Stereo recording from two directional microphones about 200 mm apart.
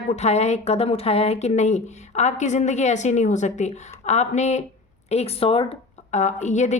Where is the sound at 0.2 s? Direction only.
35° left (ahead or behind).